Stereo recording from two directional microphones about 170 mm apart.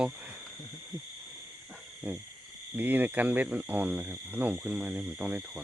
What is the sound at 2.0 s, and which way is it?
Owl, 10° right (ahead or behind).